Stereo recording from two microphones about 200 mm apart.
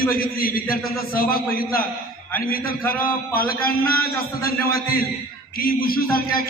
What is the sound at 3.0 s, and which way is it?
Speech, 45° left (ahead or behind).